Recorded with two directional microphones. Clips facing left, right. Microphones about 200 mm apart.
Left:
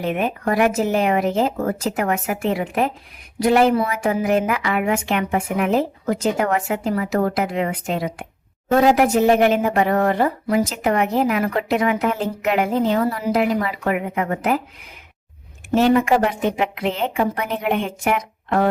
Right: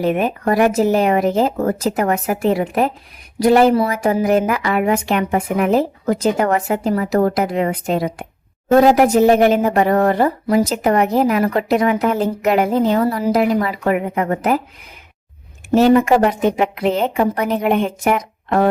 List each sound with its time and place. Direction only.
0.0 s a woman's voice: 40° right (ahead or behind)
15.7 s a woman's voice: 40° right (ahead or behind)